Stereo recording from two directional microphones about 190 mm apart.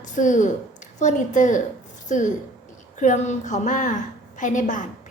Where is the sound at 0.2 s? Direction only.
40° left (ahead or behind).